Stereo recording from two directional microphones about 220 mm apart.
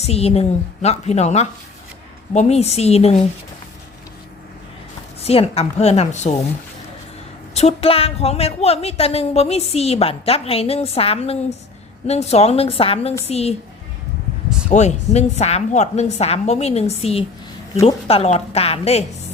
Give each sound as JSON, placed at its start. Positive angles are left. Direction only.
{"t": 0.0, "sound": "a woman's voice", "side_deg": 30}
{"t": 5.2, "sound": "a woman's voice", "side_deg": 25}
{"t": 7.5, "sound": "a woman's voice", "side_deg": 30}
{"t": 14.7, "sound": "a woman's voice", "side_deg": 30}